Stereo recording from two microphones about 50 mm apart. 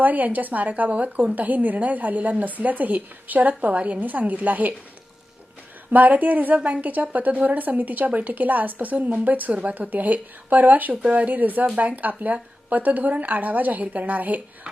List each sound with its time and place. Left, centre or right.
0.0 s speech: right
5.9 s speech: right